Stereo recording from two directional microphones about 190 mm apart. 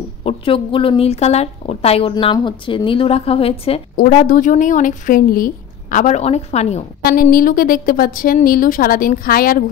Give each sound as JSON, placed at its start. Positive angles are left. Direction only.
{"t": 0.2, "sound": "a woman's voice", "side_deg": 30}
{"t": 3.9, "sound": "speech", "side_deg": 50}
{"t": 7.0, "sound": "speech", "side_deg": 50}